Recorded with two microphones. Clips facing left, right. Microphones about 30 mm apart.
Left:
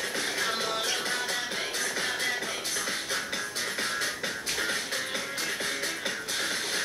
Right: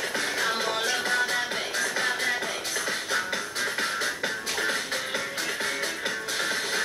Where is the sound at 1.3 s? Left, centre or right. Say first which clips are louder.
Right 4 dB; centre.